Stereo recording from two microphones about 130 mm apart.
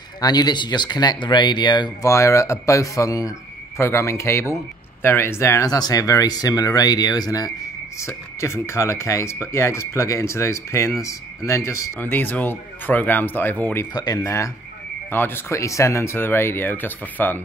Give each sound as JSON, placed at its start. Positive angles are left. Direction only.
{"t": 0.2, "sound": "speech", "side_deg": 30}
{"t": 2.0, "sound": "speech", "side_deg": 20}
{"t": 13.9, "sound": "speech", "side_deg": 30}